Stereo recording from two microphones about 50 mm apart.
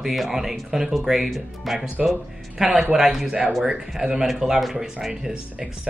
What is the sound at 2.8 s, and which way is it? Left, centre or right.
Speech, centre.